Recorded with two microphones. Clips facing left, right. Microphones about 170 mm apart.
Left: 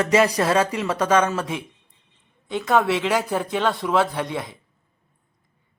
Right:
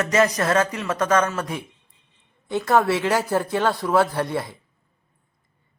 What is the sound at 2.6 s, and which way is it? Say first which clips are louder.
A man's voice: right 1 dB; centre (ahead or behind).